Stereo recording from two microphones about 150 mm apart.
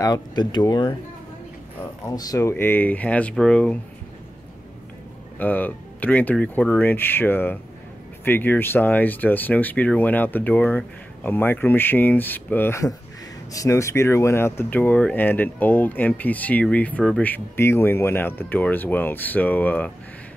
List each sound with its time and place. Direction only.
0.0 s speech: 25° left (ahead or behind)
2.0 s speech: 25° left (ahead or behind); by 3.8 s 10° left (ahead or behind)
5.4 s speech: 10° left (ahead or behind)